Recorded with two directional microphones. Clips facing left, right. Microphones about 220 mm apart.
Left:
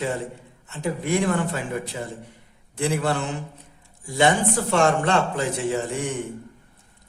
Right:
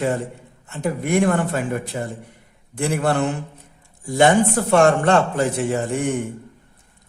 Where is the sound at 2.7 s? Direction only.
50° right (ahead or behind).